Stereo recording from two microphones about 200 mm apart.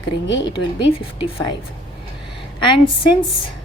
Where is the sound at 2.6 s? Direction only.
25° left (ahead or behind).